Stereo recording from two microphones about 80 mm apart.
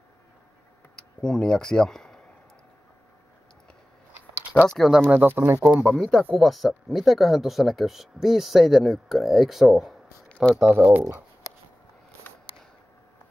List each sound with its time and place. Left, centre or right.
0.9 s speech: centre
4.1 s a sound: centre
4.6 s speech: centre
5.0 s speech: right
5.9 s speech: centre
10.2 s a sound: centre
10.7 s speech: right